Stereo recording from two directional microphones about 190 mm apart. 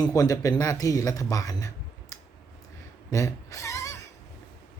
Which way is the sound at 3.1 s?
15° left (ahead or behind).